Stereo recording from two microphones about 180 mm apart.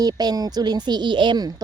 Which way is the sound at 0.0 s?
20° right (ahead or behind).